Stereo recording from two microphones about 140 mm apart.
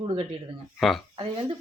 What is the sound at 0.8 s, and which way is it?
Speech, centre (ahead or behind).